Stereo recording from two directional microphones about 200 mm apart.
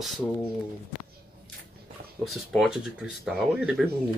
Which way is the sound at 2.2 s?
Centre (ahead or behind).